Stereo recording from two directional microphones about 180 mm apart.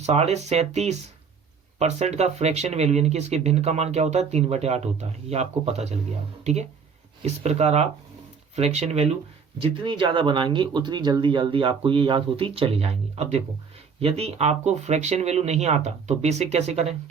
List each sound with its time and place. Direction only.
0.0 s speech: 35° right (ahead or behind)